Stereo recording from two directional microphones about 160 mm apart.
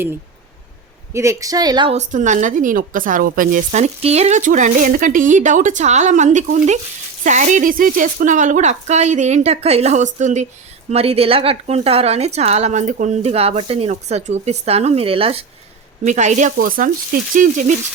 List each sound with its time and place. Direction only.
1.1 s speech: 20° right (ahead or behind)
1.9 s a woman's voice: 50° right (ahead or behind)
10.9 s a woman's voice: 40° right (ahead or behind)
16.0 s a woman's voice: 50° right (ahead or behind)